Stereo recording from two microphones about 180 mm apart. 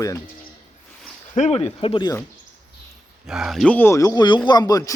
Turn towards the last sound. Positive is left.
turn(degrees=20)  # may be behind; listen again after turning